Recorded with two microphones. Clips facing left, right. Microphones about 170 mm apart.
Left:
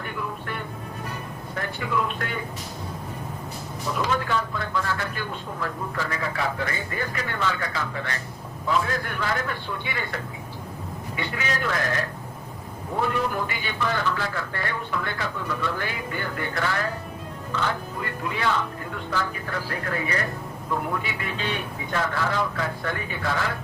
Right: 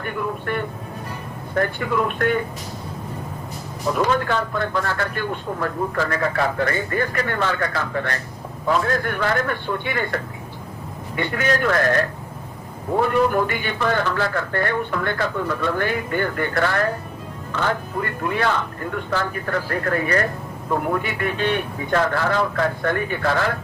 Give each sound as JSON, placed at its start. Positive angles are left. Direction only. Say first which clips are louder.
{"t": 0.0, "sound": "speech", "louder": "right 6 dB", "side_deg": -55}
{"t": 3.9, "sound": "speech", "louder": "right 4 dB", "side_deg": -60}
{"t": 11.2, "sound": "speech", "louder": "right 8 dB", "side_deg": -55}
{"t": 13.3, "sound": "speech", "louder": "right 7 dB", "side_deg": -55}